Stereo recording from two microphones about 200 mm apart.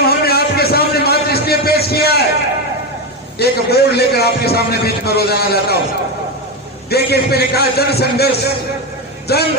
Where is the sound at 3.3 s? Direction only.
55° left (ahead or behind).